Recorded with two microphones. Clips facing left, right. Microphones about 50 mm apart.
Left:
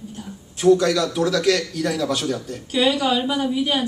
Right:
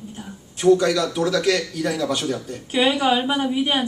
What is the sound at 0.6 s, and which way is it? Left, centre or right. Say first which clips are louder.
Speech: even; centre.